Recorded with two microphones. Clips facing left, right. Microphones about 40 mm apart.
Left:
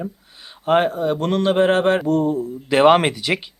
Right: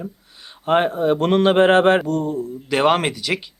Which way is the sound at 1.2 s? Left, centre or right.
Right.